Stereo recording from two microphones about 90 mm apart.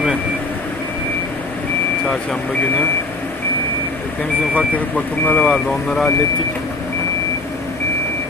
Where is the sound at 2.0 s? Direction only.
5° left (ahead or behind).